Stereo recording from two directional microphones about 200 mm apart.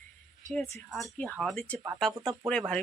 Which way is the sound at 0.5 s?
Centre (ahead or behind).